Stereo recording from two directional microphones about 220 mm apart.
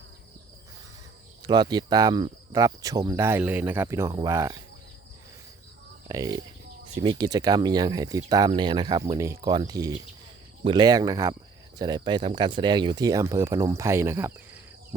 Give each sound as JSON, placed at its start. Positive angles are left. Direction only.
{"t": 1.4, "sound": "speech", "side_deg": -20}
{"t": 6.1, "sound": "speech", "side_deg": -15}